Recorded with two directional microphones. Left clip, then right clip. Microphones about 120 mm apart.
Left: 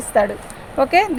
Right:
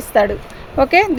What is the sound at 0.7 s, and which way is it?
Speech, 90° right.